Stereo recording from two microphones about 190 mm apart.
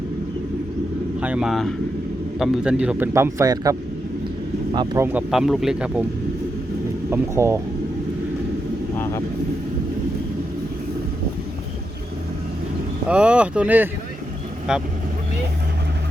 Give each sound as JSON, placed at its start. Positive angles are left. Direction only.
{"t": 1.2, "sound": "speech", "side_deg": -5}
{"t": 5.0, "sound": "speech", "side_deg": -5}
{"t": 7.1, "sound": "speech", "side_deg": -15}
{"t": 9.0, "sound": "vehicle", "side_deg": 15}
{"t": 13.1, "sound": "speech", "side_deg": -5}